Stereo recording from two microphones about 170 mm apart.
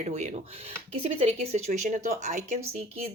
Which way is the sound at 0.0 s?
40° right (ahead or behind).